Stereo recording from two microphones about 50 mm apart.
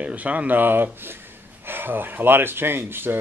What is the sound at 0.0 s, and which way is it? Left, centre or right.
Speech, right.